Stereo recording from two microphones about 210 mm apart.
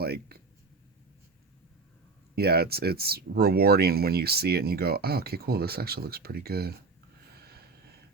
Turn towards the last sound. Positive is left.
turn(degrees=-50)  # may be behind; listen again after turning